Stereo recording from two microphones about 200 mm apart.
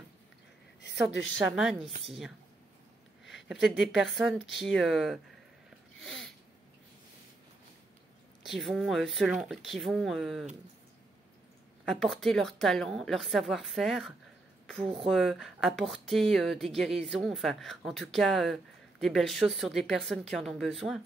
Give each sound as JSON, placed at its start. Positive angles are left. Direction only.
{"t": 0.7, "sound": "a sound", "side_deg": 60}
{"t": 1.4, "sound": "speech", "side_deg": 0}
{"t": 3.4, "sound": "speech", "side_deg": 0}
{"t": 5.9, "sound": "a sound", "side_deg": 0}
{"t": 8.5, "sound": "speech", "side_deg": 0}
{"t": 11.8, "sound": "speech", "side_deg": 0}